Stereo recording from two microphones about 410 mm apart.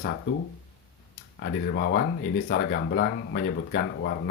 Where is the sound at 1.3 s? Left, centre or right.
Left.